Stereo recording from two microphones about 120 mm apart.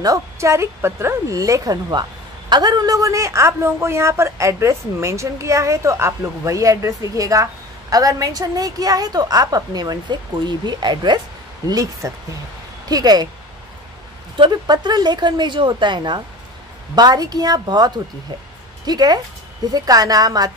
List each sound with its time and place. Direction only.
0.0 s a woman's voice: 25° right (ahead or behind)
14.3 s a woman's voice: 40° right (ahead or behind)